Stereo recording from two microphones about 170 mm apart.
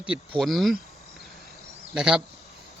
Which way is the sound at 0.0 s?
Centre (ahead or behind).